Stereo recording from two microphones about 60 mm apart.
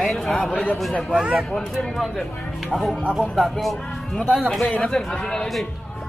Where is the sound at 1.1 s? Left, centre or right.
Centre.